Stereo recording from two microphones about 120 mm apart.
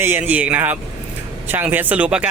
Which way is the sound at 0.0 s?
15° right (ahead or behind).